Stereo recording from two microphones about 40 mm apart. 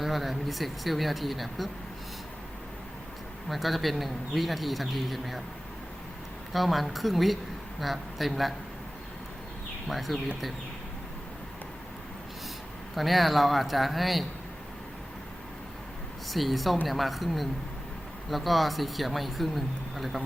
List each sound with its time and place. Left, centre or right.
0.0 s speech: centre
3.5 s speech: centre
6.5 s speech: centre
9.8 s speech: centre
12.9 s speech: centre
16.3 s speech: centre